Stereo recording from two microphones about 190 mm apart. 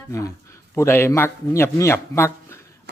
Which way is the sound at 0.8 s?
15° left (ahead or behind).